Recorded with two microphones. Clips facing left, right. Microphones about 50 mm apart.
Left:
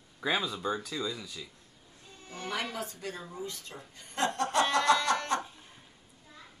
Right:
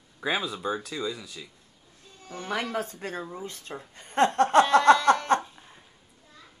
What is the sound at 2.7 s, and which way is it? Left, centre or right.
Speech, right.